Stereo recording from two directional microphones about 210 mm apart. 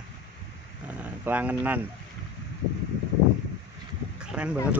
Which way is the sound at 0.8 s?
5° right (ahead or behind).